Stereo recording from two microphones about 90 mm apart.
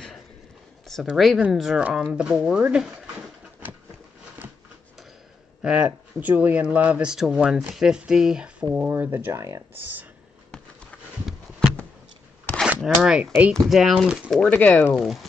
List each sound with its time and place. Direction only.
1.0 s speech: centre (ahead or behind)
5.6 s speech: 10° right (ahead or behind)
8.7 s speech: 20° right (ahead or behind)
9.4 s speech: 35° right (ahead or behind)
12.8 s speech: centre (ahead or behind)
13.2 s speech: 20° right (ahead or behind)
13.5 s speech: centre (ahead or behind)
14.3 s speech: 15° left (ahead or behind)
14.9 s speech: 5° right (ahead or behind)